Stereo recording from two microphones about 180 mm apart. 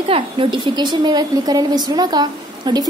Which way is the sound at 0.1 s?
30° right (ahead or behind).